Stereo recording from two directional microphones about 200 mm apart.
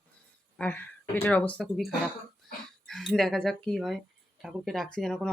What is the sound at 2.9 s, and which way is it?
Speech, centre (ahead or behind).